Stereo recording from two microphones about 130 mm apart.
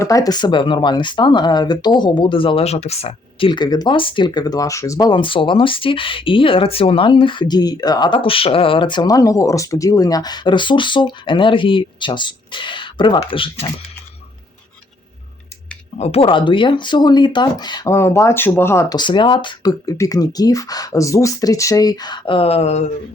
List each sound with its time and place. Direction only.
0.0 s speech: 25° left (ahead or behind); by 13.7 s 45° left (ahead or behind)
16.0 s speech: 50° left (ahead or behind); by 17.9 s 35° left (ahead or behind)
17.9 s speech: 20° left (ahead or behind)
18.9 s speech: 40° left (ahead or behind)
19.8 s speech: 25° left (ahead or behind); by 22.9 s 55° left (ahead or behind)